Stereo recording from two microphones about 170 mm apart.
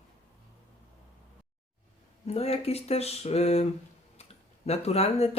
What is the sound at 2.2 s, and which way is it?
Speech, 35° left (ahead or behind).